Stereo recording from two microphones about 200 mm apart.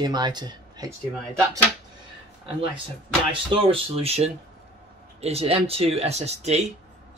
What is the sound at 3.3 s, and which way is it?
Speech, 25° right (ahead or behind).